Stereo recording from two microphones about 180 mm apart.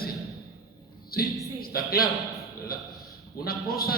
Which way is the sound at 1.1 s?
55° left (ahead or behind).